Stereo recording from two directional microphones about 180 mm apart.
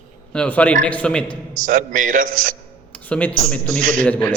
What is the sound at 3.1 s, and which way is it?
Speech, 10° left (ahead or behind).